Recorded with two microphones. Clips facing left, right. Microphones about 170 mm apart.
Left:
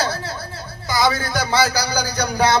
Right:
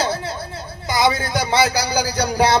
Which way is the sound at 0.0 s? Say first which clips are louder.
Right 2 dB; 25° right (ahead or behind).